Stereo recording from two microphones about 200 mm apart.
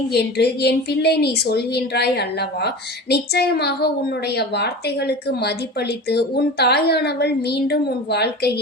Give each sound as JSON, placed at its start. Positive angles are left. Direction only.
{"t": 0.1, "sound": "a woman's voice", "side_deg": 55}